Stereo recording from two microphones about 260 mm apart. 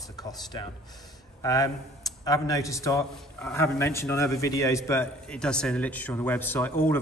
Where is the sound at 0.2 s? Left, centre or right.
Centre.